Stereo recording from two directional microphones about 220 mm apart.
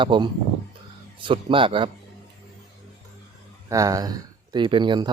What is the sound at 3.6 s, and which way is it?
Speech, 15° right (ahead or behind).